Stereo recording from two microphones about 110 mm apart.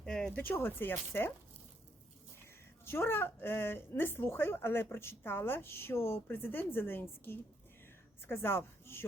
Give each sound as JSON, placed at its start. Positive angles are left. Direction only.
{"t": 0.0, "sound": "a sound", "side_deg": 10}
{"t": 0.5, "sound": "speech", "side_deg": 20}
{"t": 2.8, "sound": "speech", "side_deg": 20}